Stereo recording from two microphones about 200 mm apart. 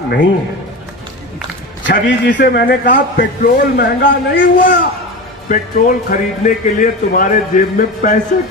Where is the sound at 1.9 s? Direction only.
60° left (ahead or behind).